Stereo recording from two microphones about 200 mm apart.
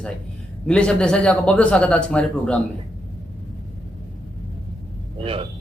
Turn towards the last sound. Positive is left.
turn(degrees=-30)  # may be behind; listen again after turning